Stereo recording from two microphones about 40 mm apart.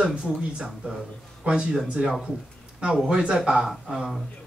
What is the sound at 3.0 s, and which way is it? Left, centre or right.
Speech, right.